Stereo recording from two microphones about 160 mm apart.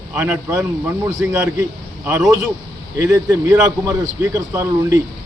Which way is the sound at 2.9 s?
15° right (ahead or behind).